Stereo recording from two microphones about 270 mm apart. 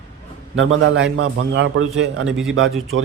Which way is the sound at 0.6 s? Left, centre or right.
Right.